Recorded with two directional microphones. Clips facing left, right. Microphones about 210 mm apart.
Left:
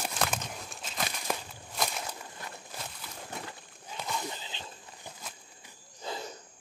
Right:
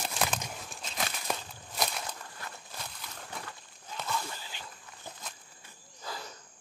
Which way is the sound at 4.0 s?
15° left (ahead or behind).